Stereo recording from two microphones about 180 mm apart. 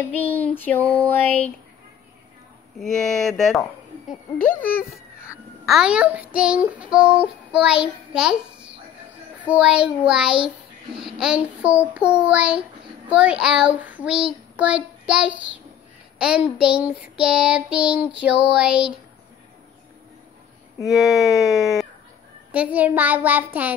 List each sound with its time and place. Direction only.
0.1 s child singing: 10° left (ahead or behind)
2.8 s child singing: centre (ahead or behind)
5.7 s child singing: 5° right (ahead or behind)
20.8 s child singing: centre (ahead or behind)